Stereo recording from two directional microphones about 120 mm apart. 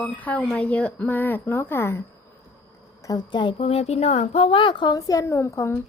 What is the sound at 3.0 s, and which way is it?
A woman's voice, 35° left (ahead or behind).